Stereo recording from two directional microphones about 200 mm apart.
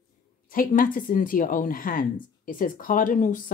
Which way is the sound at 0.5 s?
45° left (ahead or behind).